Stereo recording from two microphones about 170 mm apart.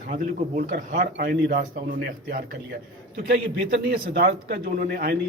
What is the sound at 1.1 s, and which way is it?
A man's voice, 70° right (ahead or behind).